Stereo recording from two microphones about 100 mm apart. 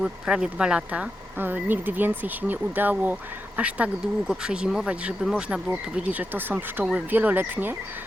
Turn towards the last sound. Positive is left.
turn(degrees=-20)  # may be behind; listen again after turning